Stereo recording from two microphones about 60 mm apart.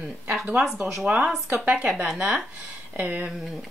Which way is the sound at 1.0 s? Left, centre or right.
Right.